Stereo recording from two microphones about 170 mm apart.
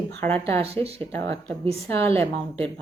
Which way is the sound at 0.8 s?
35° right (ahead or behind).